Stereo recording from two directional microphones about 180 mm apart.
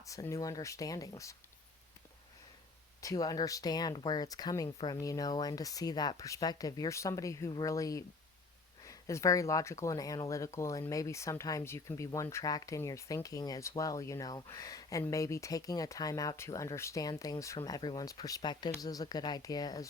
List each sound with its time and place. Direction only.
0.0 s speech: 20° left (ahead or behind)
3.0 s speech: 20° left (ahead or behind)